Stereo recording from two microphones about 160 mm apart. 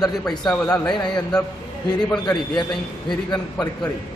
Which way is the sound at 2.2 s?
25° left (ahead or behind).